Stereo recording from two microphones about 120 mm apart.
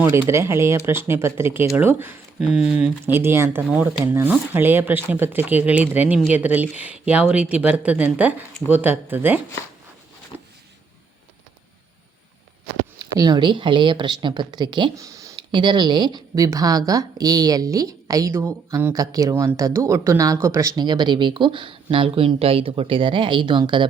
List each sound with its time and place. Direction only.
0.0 s speech: 20° right (ahead or behind)
3.0 s speech: 20° right (ahead or behind)
10.3 s a sound: 20° right (ahead or behind)
13.0 s speech: 35° right (ahead or behind)
14.9 s a sound: 25° right (ahead or behind)
15.4 s speech: 40° right (ahead or behind)